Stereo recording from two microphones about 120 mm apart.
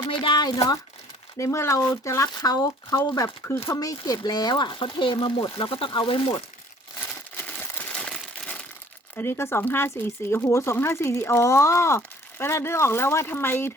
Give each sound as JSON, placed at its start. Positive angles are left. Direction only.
{"t": 0.0, "sound": "speech", "side_deg": 40}
{"t": 1.4, "sound": "speech", "side_deg": 25}
{"t": 3.1, "sound": "speech", "side_deg": 20}
{"t": 7.1, "sound": "a sound", "side_deg": 15}
{"t": 9.1, "sound": "speech", "side_deg": 20}